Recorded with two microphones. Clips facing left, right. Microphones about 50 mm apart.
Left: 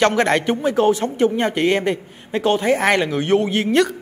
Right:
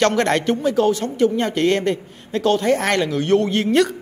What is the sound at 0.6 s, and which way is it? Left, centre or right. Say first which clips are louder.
A woman's voice: left 1 dB; left.